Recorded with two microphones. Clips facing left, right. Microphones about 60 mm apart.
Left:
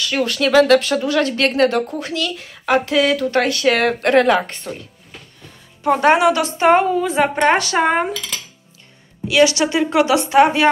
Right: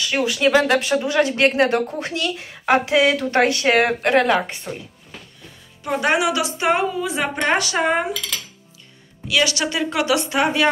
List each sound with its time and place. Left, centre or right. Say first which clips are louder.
0.0 s speech: even; centre
4.0 s a woman's voice: left 3 dB; centre
5.9 s a woman's voice: left 6 dB; left
9.3 s a woman's voice: left 6 dB; left